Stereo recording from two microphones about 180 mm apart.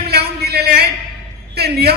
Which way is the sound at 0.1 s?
65° right (ahead or behind).